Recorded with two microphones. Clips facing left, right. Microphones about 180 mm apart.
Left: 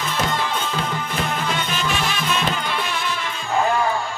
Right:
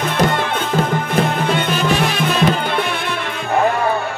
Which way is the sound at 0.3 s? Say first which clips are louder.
Right 5 dB; 60° right (ahead or behind).